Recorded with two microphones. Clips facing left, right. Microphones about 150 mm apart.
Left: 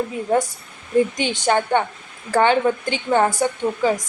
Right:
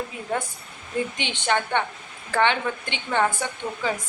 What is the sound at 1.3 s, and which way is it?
A woman's voice, 40° left (ahead or behind).